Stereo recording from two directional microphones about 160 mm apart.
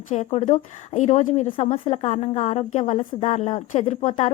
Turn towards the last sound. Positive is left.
turn(degrees=45)  # may be behind; listen again after turning